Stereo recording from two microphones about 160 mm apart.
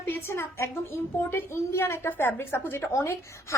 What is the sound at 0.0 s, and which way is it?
A child's voice, 15° left (ahead or behind).